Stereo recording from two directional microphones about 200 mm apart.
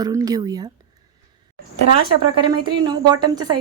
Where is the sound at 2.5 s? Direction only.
20° right (ahead or behind).